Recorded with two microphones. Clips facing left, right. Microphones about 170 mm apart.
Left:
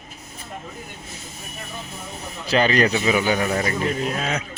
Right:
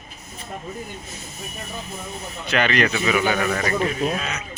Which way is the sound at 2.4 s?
35° left (ahead or behind).